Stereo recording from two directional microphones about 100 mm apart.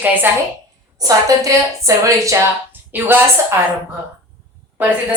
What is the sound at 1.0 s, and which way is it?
A woman's voice, 35° right (ahead or behind).